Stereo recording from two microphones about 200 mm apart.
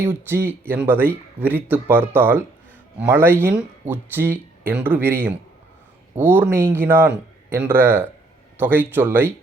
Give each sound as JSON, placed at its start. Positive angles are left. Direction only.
{"t": 0.0, "sound": "speech", "side_deg": -10}